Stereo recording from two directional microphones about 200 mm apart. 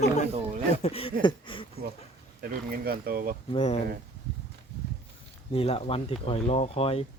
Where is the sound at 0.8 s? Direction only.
30° left (ahead or behind).